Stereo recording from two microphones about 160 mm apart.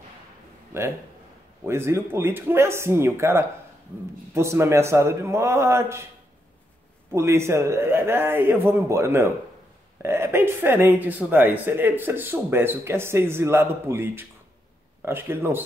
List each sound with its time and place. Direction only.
1.6 s speech: 15° right (ahead or behind)
7.2 s speech: 15° right (ahead or behind)